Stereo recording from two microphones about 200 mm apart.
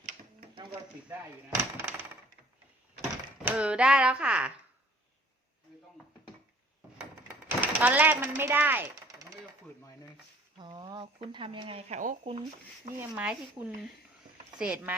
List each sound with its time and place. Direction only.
1.1 s speech: 15° right (ahead or behind)
3.4 s speech: 5° right (ahead or behind)
7.0 s sewing machine: 10° right (ahead or behind)
10.6 s speech: 20° right (ahead or behind)
13.0 s speech: 10° right (ahead or behind)